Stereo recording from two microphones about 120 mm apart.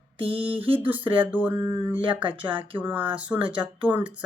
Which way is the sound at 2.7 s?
15° right (ahead or behind).